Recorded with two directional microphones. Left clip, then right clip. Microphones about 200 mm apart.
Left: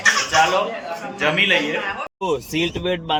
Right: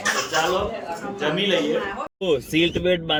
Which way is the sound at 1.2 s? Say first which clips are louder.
Left 5 dB; 15° left (ahead or behind).